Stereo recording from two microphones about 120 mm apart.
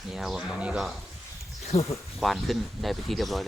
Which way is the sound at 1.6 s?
60° left (ahead or behind).